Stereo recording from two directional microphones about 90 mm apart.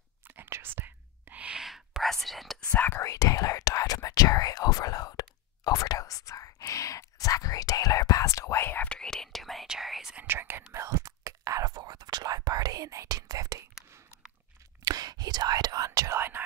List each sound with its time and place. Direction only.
0.3 s whispering: 25° right (ahead or behind); by 2.6 s centre (ahead or behind)
2.9 s whispering: 35° left (ahead or behind)
8.8 s whispering: 10° left (ahead or behind)
10.2 s whispering: 25° right (ahead or behind); by 13.7 s 40° right (ahead or behind)
14.9 s whispering: 45° right (ahead or behind)
16.2 s whispering: 25° right (ahead or behind)